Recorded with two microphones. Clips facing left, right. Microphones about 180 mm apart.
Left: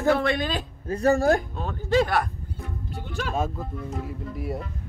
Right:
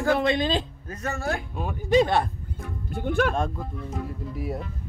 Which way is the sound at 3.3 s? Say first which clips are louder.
Even; 5° left (ahead or behind).